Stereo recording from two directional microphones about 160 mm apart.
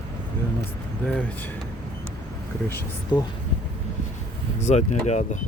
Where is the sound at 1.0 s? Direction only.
10° left (ahead or behind).